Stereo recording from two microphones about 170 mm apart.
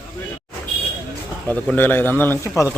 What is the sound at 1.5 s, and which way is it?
A man's voice, 10° left (ahead or behind).